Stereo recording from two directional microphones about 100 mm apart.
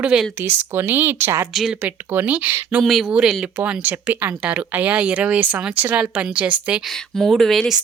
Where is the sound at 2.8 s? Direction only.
5° right (ahead or behind).